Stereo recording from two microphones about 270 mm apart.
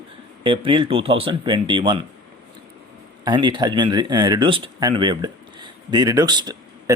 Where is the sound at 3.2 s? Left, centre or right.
Centre.